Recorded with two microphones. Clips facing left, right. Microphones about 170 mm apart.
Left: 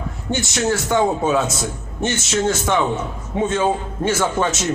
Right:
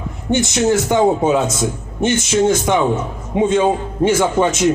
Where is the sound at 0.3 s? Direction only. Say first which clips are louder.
Right 5 dB; 20° right (ahead or behind).